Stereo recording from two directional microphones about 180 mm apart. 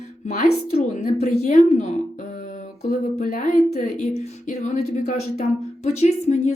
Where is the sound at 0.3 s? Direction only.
40° left (ahead or behind).